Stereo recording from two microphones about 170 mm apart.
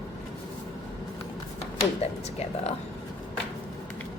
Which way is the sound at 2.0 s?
40° left (ahead or behind).